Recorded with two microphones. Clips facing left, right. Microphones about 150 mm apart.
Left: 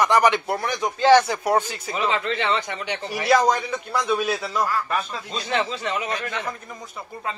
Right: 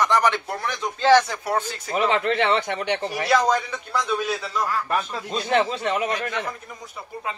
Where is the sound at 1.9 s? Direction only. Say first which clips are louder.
Right 3 dB; 60° right (ahead or behind).